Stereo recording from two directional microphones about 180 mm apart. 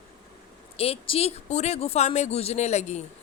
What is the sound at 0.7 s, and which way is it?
Speech, 35° left (ahead or behind).